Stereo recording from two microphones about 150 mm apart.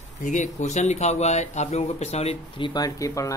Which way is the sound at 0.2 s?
55° left (ahead or behind).